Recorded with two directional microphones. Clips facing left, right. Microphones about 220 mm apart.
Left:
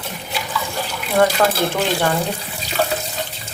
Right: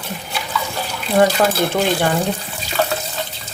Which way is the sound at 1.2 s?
20° right (ahead or behind).